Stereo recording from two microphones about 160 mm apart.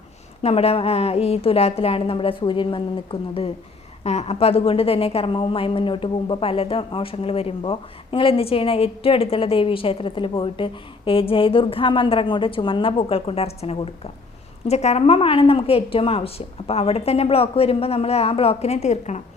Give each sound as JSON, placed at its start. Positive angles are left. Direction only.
{"t": 0.4, "sound": "a woman's voice", "side_deg": 40}